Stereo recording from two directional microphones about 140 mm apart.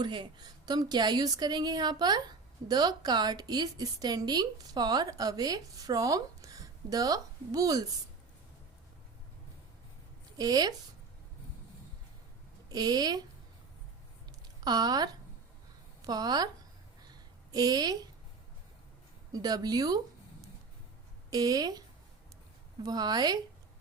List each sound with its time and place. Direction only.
0.0 s a woman's voice: 35° right (ahead or behind)
10.3 s a woman's voice: 30° right (ahead or behind)
12.6 s a woman's voice: 30° right (ahead or behind)
14.6 s a woman's voice: 30° right (ahead or behind)
17.1 s a sound: 30° right (ahead or behind)
19.3 s a woman's voice: 25° right (ahead or behind)
21.2 s a woman's voice: 25° right (ahead or behind)